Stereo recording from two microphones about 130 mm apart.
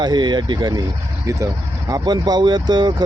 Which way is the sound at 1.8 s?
30° right (ahead or behind).